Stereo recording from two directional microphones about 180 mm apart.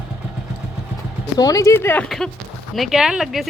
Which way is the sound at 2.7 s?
Centre (ahead or behind).